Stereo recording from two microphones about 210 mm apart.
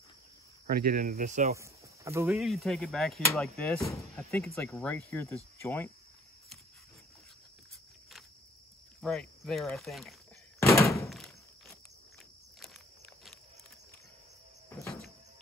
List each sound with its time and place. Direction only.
0.7 s speech: 45° right (ahead or behind)
1.6 s a sound: 10° right (ahead or behind)
2.3 s speech: centre (ahead or behind)
9.0 s speech: 5° left (ahead or behind)
10.6 s thunk: 15° left (ahead or behind)
11.1 s thunk: centre (ahead or behind)
12.6 s a sound: centre (ahead or behind)